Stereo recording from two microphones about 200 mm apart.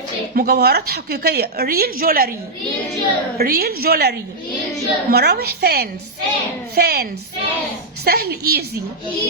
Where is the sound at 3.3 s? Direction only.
50° right (ahead or behind).